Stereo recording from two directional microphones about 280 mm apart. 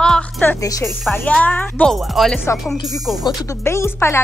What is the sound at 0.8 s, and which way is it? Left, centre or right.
Speech, centre.